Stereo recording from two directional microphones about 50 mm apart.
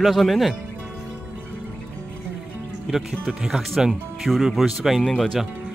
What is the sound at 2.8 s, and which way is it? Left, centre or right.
Speech, centre.